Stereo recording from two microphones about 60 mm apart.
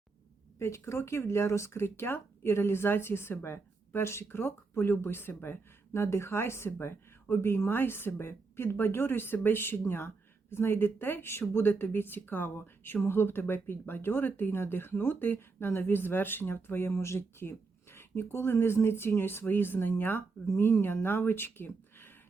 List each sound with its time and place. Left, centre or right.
0.6 s speech: left
16.9 s speech: left